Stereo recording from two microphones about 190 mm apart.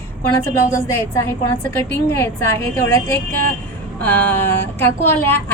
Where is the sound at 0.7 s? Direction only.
15° left (ahead or behind).